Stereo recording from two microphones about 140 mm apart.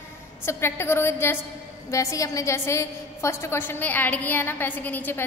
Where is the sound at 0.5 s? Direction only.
15° left (ahead or behind).